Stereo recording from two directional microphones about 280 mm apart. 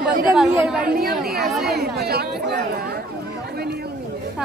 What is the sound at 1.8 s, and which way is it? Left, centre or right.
Chatter, right.